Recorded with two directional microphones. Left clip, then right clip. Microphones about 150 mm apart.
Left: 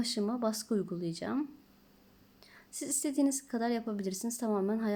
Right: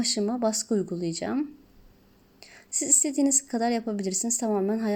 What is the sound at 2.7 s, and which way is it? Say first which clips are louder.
A woman's voice: right 8 dB; 20° right (ahead or behind).